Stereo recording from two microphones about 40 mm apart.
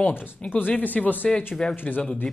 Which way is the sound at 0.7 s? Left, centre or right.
Left.